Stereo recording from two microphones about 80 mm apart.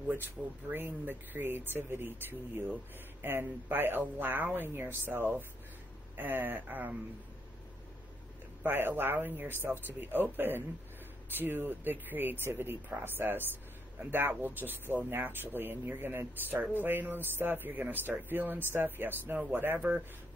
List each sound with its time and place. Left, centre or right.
0.7 s speech: right
8.6 s speech: right